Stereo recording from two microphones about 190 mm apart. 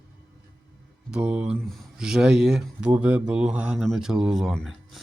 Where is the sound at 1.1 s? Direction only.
5° right (ahead or behind).